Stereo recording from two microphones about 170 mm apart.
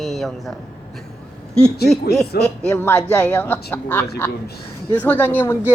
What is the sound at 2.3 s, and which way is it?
Speech, 70° left (ahead or behind).